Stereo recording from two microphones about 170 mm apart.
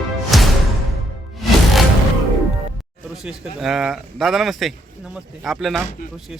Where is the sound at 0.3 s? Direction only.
Centre (ahead or behind).